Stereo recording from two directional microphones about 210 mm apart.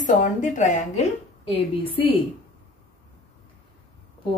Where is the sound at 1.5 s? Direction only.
25° left (ahead or behind).